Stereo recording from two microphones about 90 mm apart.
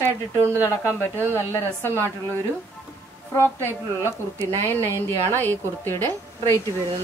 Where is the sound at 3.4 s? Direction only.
25° left (ahead or behind).